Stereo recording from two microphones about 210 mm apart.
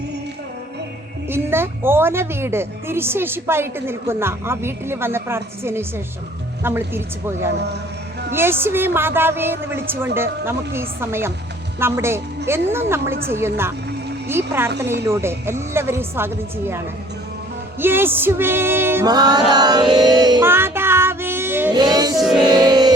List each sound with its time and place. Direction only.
1.3 s a woman's voice: 10° right (ahead or behind)
17.7 s music: 10° right (ahead or behind)
22.2 s music: 5° right (ahead or behind)
22.4 s music: 20° right (ahead or behind)